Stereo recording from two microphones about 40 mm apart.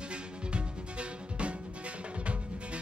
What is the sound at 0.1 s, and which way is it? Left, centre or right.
Music, right.